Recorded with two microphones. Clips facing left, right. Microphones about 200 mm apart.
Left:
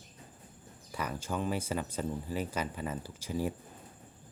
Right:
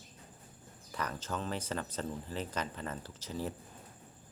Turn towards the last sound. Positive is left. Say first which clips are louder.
# left 5 dB
turn(degrees=10)  # may be behind; listen again after turning